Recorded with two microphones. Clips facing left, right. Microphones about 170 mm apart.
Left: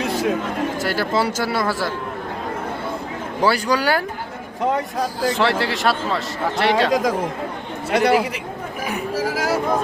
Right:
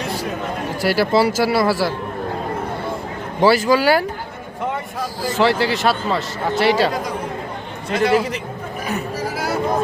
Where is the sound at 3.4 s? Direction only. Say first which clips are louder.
Right 5 dB; 5° right (ahead or behind).